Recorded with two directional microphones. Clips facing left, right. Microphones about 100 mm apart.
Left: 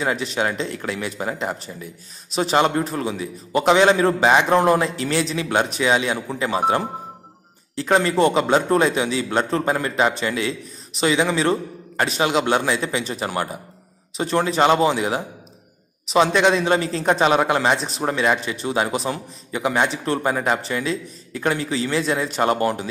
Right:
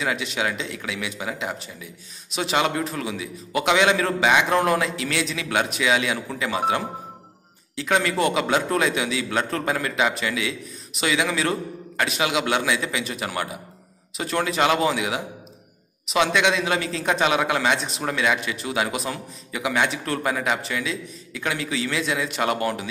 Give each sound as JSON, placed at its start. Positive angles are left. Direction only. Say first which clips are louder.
{"t": 0.0, "sound": "a man's voice", "louder": "left 3 dB", "side_deg": 35}
{"t": 7.7, "sound": "a man's voice", "louder": "left 4 dB", "side_deg": 35}
{"t": 17.7, "sound": "speech", "louder": "left 2 dB", "side_deg": 0}
{"t": 18.0, "sound": "a man's voice", "louder": "left 3 dB", "side_deg": 35}